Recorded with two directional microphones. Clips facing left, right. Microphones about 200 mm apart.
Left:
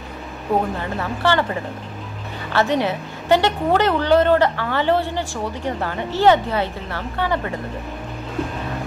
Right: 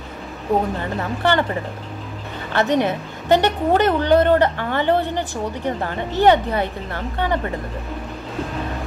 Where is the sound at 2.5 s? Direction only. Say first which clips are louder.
Right 1 dB; 20° right (ahead or behind).